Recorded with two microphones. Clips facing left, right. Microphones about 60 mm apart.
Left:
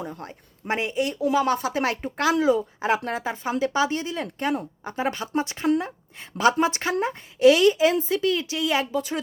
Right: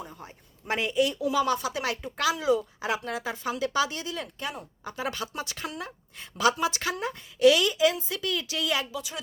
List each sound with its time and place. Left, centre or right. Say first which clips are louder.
0.0 s a sound: left 7 dB; left
0.7 s a woman's voice: left 1 dB; left
4.4 s a woman's voice: left 10 dB; left
4.8 s a woman's voice: left 5 dB; left
8.9 s a woman's voice: left 9 dB; left